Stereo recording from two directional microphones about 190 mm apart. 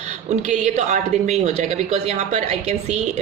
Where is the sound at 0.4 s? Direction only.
35° right (ahead or behind).